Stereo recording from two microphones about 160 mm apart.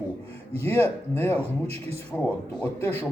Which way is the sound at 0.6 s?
15° left (ahead or behind).